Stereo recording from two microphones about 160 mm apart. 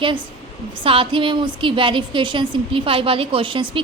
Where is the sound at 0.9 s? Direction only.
35° right (ahead or behind).